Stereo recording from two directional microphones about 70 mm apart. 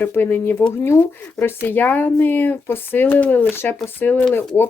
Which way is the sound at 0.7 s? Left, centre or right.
Left.